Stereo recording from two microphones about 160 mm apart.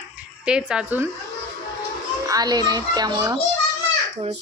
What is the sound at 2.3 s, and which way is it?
A child's voice, 25° right (ahead or behind).